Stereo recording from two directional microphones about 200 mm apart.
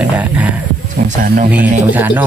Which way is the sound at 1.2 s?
45° right (ahead or behind).